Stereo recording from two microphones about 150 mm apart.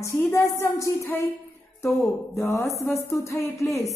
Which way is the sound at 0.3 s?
20° left (ahead or behind).